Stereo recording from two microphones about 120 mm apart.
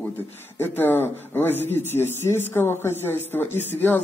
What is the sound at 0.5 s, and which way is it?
A woman's voice, 15° left (ahead or behind).